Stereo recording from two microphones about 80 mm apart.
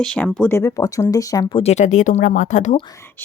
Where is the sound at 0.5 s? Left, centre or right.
Left.